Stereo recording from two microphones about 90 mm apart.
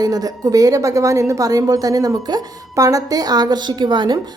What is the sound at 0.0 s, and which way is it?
A woman's voice, 45° right (ahead or behind).